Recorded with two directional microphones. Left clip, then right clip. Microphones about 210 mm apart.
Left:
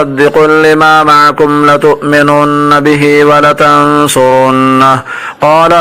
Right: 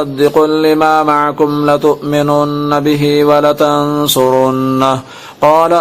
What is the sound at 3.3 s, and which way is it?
Mantra, 20° left (ahead or behind).